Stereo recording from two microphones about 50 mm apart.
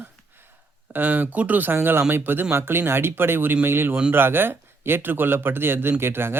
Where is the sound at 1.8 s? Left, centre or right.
Right.